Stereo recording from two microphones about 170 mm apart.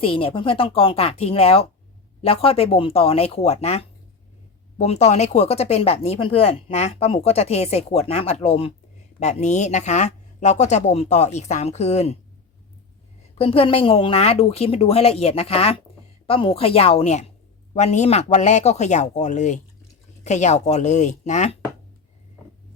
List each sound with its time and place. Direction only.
0.0 s speech: 30° left (ahead or behind)
13.4 s speech: 35° left (ahead or behind)